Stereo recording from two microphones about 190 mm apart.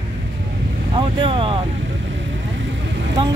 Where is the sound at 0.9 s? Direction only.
25° right (ahead or behind).